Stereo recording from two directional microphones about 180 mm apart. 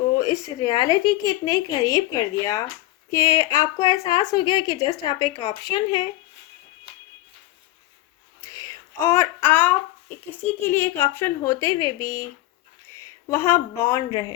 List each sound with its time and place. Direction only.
0.2 s a woman's voice: 20° left (ahead or behind)
8.5 s a sound: 15° left (ahead or behind)
10.2 s a woman's voice: 10° left (ahead or behind)